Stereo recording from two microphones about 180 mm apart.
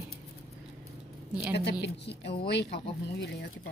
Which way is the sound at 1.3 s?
10° right (ahead or behind).